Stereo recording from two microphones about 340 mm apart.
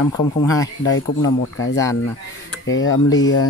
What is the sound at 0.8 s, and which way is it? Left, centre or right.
Speech, left.